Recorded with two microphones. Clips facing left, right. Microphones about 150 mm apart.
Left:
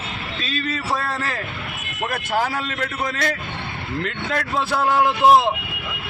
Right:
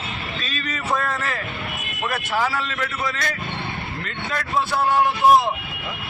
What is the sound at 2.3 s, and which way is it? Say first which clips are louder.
Speech: left 1 dB; 50° left (ahead or behind).